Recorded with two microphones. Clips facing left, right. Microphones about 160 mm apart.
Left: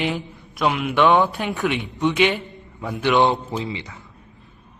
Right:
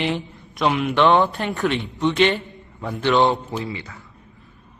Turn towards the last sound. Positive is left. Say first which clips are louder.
# left 1 dB
turn(degrees=20)  # may be behind; listen again after turning